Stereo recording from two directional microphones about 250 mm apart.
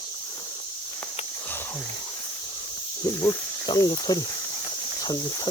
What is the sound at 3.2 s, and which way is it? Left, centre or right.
Speech, centre.